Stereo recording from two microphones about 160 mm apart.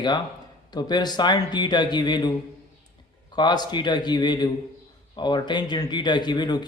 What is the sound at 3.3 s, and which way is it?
A man's voice, 25° left (ahead or behind).